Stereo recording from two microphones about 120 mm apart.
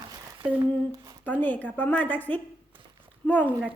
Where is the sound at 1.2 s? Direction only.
15° left (ahead or behind).